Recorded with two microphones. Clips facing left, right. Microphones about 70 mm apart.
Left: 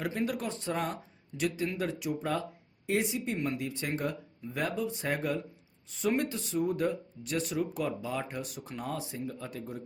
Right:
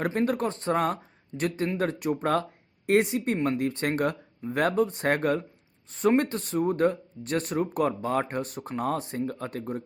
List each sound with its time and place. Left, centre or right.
0.0 s speech: right
5.9 s speech: right